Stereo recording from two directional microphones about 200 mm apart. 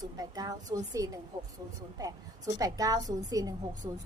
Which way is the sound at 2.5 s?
20° right (ahead or behind).